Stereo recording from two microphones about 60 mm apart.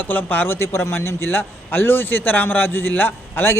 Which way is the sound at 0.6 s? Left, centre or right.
Left.